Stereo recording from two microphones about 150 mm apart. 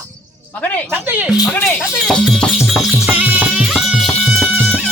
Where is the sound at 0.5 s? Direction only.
10° left (ahead or behind).